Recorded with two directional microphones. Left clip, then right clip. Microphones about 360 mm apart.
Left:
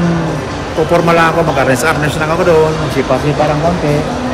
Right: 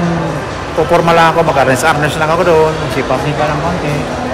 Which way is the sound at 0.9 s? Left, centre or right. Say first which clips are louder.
Right 1 dB; centre.